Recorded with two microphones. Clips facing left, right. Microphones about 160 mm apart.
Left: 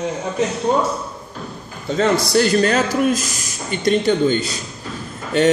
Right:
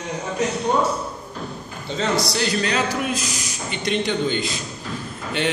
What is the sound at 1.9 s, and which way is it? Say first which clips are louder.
A man's voice: left 6 dB; 50° left (ahead or behind).